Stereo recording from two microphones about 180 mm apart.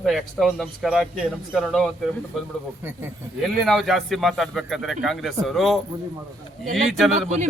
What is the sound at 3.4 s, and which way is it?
A man's voice, centre (ahead or behind).